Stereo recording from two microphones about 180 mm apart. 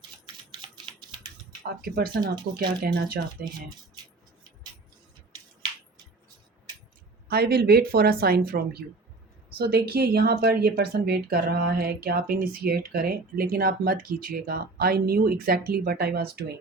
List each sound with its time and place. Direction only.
1.8 s speech: 55° right (ahead or behind)
2.3 s speech: 25° right (ahead or behind)
2.8 s speech: 55° right (ahead or behind)
7.3 s speech: 60° right (ahead or behind)